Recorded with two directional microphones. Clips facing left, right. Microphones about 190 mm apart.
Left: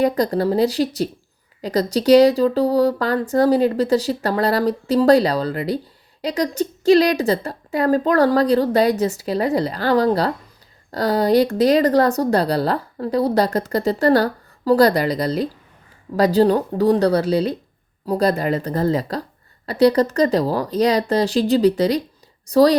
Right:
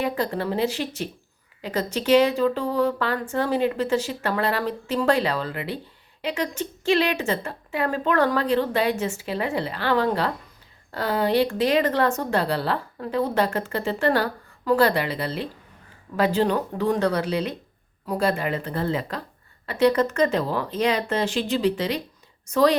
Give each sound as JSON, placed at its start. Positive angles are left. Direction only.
{"t": 0.0, "sound": "speech", "side_deg": 40}